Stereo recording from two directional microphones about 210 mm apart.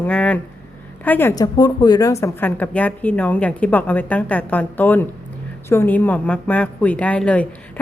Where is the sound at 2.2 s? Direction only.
10° left (ahead or behind).